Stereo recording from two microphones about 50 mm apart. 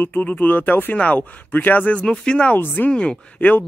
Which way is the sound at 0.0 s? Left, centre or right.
Left.